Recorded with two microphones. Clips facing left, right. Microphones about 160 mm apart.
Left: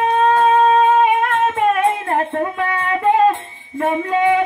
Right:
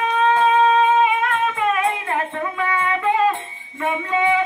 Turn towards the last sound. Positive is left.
turn(degrees=50)  # may be behind; listen again after turning